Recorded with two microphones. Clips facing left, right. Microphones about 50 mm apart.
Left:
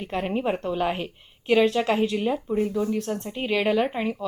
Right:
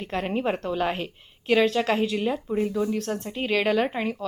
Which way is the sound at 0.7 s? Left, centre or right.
Centre.